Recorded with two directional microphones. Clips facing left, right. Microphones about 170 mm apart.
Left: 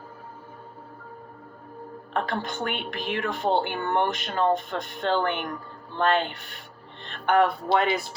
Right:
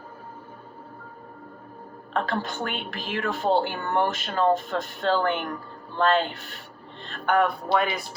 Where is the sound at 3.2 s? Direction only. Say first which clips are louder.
Right 2 dB; 15° left (ahead or behind).